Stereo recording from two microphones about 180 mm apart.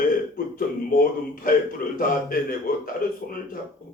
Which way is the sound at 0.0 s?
50° left (ahead or behind).